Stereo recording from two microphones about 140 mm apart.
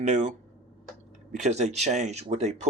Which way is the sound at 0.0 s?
55° right (ahead or behind).